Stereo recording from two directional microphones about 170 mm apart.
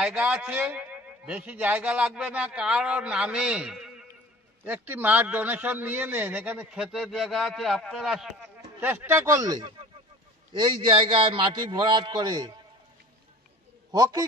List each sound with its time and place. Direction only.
0.0 s a man's voice: 5° right (ahead or behind); by 12.5 s 25° right (ahead or behind)